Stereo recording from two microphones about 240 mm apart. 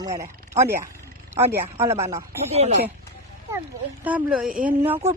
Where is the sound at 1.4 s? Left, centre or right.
Centre.